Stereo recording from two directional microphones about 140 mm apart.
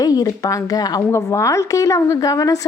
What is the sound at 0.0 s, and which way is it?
A woman's voice, 25° left (ahead or behind).